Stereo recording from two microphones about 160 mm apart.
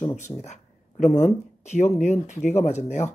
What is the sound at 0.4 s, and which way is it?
Speech, 45° left (ahead or behind).